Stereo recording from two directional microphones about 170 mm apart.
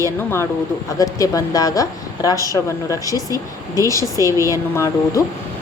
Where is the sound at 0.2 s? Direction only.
15° left (ahead or behind).